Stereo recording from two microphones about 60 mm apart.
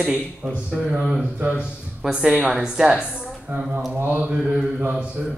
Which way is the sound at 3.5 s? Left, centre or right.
Right.